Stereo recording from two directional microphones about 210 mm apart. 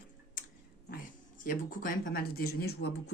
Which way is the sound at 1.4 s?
40° left (ahead or behind).